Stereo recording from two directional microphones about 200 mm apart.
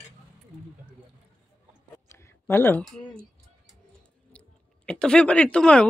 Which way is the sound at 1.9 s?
15° left (ahead or behind).